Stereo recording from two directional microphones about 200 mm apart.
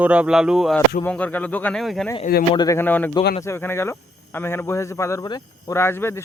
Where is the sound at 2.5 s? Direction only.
15° left (ahead or behind).